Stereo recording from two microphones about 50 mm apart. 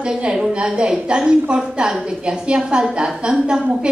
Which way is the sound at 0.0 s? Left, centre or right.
Centre.